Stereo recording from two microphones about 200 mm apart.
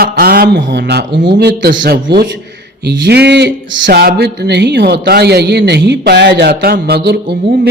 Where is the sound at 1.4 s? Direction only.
55° right (ahead or behind).